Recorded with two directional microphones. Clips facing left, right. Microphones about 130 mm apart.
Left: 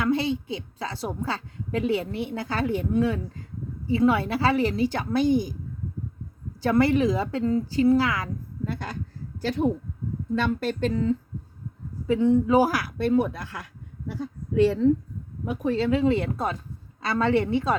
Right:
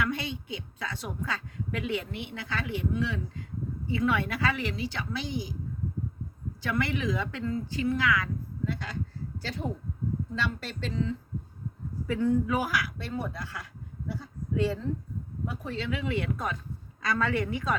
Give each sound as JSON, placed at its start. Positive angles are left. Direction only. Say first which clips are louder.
{"t": 0.0, "sound": "a woman's voice", "louder": "left 8 dB", "side_deg": 30}
{"t": 3.8, "sound": "a woman's voice", "louder": "left 7 dB", "side_deg": 30}
{"t": 6.6, "sound": "a woman's voice", "louder": "left 10 dB", "side_deg": 40}
{"t": 12.0, "sound": "speech", "louder": "left 6 dB", "side_deg": 25}
{"t": 14.5, "sound": "speech", "louder": "left 8 dB", "side_deg": 70}
{"t": 15.7, "sound": "a woman's voice", "louder": "left 10 dB", "side_deg": 35}